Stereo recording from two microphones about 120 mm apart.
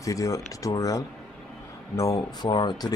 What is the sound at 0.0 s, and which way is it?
Speech, 30° left (ahead or behind).